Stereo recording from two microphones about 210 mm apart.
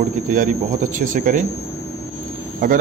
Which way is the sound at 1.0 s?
40° right (ahead or behind).